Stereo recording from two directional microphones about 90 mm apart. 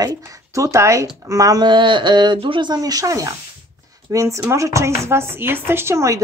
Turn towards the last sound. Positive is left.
turn(degrees=-35)  # may be behind; listen again after turning